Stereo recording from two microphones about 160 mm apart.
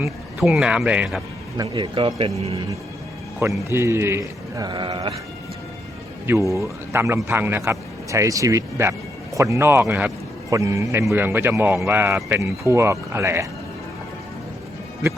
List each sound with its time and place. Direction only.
0.3 s speech: centre (ahead or behind)
1.5 s speech: 30° right (ahead or behind)
3.7 s a man's voice: 15° right (ahead or behind)
6.2 s a man's voice: 20° right (ahead or behind)